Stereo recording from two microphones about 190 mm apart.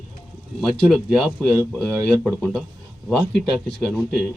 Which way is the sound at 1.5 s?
10° right (ahead or behind).